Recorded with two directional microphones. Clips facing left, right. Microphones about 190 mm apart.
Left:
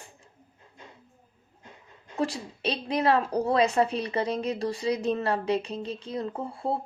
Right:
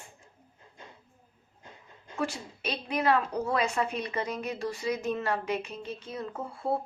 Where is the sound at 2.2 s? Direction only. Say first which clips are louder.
Left 4 dB; 35° left (ahead or behind).